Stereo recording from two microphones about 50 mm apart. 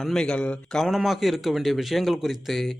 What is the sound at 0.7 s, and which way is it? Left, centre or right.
Speech, centre.